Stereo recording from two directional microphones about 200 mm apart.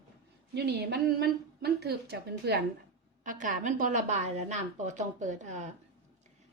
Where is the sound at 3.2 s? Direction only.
40° right (ahead or behind).